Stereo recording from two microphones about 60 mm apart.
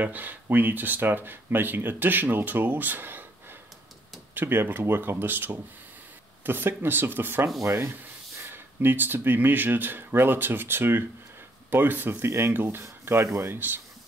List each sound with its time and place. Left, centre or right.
0.0 s speech: right